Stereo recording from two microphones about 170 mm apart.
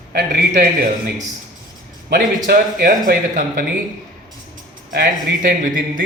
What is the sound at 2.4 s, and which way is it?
Speech, 55° right (ahead or behind).